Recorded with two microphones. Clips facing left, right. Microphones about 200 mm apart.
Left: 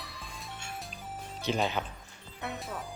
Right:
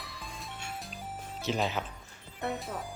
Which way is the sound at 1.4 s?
Centre (ahead or behind).